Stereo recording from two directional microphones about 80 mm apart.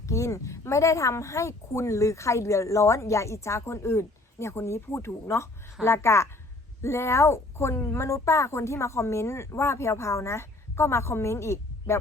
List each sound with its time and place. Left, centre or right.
0.0 s a woman's voice: left